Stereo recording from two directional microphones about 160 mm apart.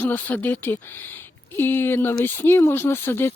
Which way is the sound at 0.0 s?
10° left (ahead or behind).